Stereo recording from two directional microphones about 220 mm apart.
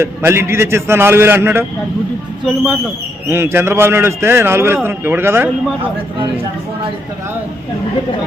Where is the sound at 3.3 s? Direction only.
10° right (ahead or behind).